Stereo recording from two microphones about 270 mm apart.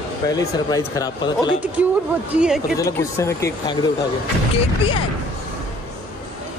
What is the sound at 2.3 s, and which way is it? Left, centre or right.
Speech, centre.